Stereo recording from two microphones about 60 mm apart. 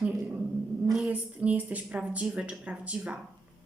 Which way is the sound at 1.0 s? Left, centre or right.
Right.